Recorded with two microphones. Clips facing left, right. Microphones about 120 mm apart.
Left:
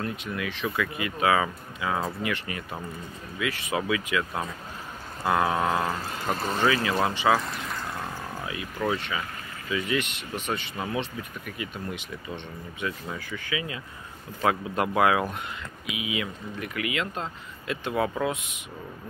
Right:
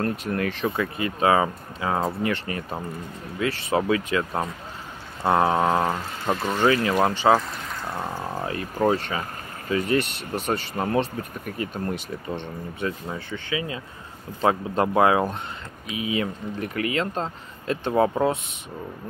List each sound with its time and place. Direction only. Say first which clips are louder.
0.0 s speech: right 6 dB; 45° right (ahead or behind)
7.9 s a sound: right 5 dB; 30° right (ahead or behind)
8.5 s speech: right 6 dB; 40° right (ahead or behind)